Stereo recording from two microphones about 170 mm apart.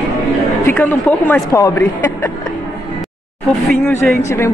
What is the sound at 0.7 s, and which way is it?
Speech, 10° left (ahead or behind).